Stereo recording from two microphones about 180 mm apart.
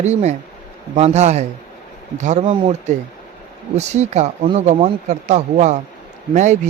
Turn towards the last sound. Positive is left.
turn(degrees=-45)  # may be behind; listen again after turning